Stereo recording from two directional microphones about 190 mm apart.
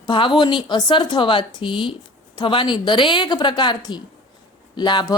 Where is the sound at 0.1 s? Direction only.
25° left (ahead or behind).